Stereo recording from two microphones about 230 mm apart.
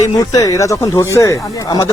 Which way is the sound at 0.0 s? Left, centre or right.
Centre.